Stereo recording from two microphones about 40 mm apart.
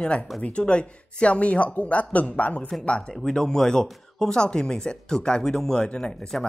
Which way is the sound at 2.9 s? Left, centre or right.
Left.